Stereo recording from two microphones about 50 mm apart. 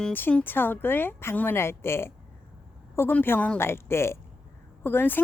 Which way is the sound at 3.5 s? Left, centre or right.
Left.